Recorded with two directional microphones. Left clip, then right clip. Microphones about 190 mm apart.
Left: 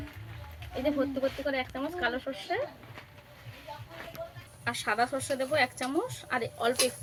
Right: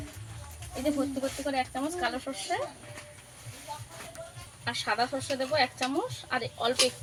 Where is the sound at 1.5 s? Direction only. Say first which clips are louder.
Right 1 dB; 5° left (ahead or behind).